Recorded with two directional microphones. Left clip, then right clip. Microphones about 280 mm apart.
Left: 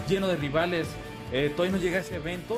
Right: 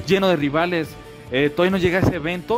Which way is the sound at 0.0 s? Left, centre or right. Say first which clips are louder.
Right 9 dB; right.